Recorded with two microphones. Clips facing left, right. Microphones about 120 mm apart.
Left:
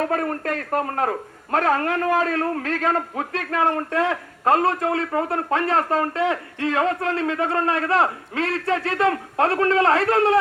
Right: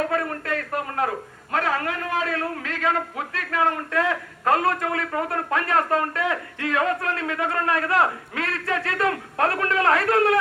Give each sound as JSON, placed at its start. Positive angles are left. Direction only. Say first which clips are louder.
{"t": 0.1, "sound": "a man's voice", "louder": "left 2 dB", "side_deg": 40}